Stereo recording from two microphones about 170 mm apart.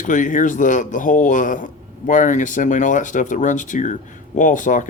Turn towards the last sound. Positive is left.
turn(degrees=50)  # may be behind; listen again after turning